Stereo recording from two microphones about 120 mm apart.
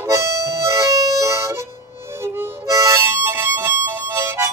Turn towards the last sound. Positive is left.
turn(degrees=-20)  # may be behind; listen again after turning